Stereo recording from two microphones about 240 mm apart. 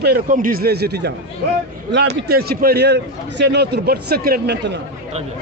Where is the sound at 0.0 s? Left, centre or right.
Right.